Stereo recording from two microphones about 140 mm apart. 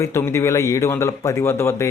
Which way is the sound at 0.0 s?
20° left (ahead or behind).